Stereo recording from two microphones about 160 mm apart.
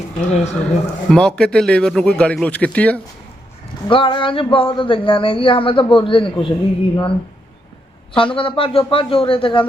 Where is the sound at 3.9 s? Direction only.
30° left (ahead or behind).